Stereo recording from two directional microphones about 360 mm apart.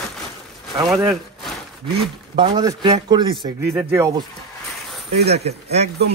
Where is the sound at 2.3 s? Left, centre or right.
Centre.